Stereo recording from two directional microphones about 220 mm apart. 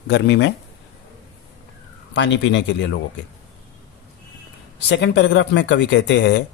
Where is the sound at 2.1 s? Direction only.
55° left (ahead or behind).